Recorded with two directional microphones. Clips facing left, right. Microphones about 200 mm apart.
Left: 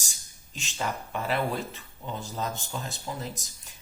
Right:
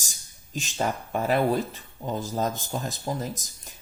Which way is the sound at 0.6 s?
45° right (ahead or behind).